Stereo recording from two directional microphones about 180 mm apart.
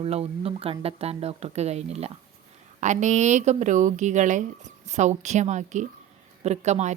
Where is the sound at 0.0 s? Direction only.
35° right (ahead or behind).